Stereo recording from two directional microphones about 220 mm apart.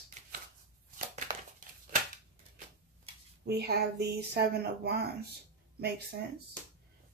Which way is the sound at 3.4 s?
45° right (ahead or behind).